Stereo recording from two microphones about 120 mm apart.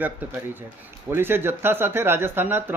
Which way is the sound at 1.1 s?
20° right (ahead or behind).